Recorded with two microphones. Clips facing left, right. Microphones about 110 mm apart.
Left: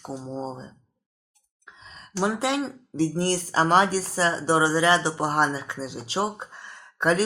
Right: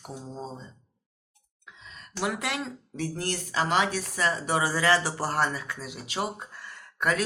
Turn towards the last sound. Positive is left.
turn(degrees=25)  # may be behind; listen again after turning